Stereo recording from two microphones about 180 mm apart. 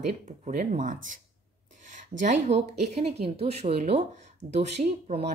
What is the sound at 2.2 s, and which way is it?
Speech, 40° right (ahead or behind).